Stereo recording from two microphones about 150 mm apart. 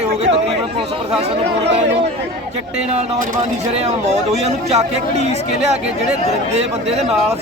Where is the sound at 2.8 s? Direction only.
45° right (ahead or behind).